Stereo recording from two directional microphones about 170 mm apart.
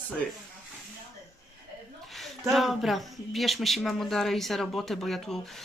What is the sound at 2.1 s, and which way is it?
Speech, centre (ahead or behind).